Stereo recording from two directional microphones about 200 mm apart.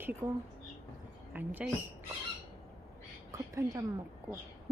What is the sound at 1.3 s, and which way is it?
Speech, 10° right (ahead or behind).